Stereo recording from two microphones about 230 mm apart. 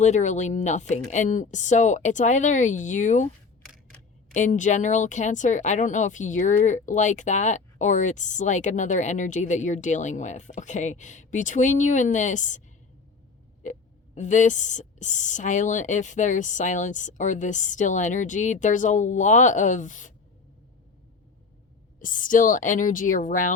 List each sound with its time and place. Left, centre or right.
0.0 s speech: left
3.7 s camera: centre
4.4 s speech: left
14.2 s speech: left
21.9 s speech: left